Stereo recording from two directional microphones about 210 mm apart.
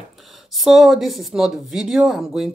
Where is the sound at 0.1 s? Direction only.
Centre (ahead or behind).